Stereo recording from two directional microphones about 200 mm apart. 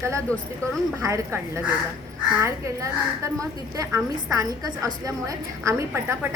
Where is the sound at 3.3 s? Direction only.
15° right (ahead or behind).